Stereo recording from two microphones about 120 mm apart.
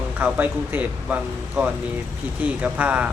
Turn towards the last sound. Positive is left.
turn(degrees=-10)  # may be behind; listen again after turning